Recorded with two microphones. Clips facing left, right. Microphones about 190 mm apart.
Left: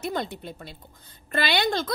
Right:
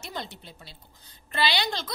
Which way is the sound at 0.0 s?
55° left (ahead or behind).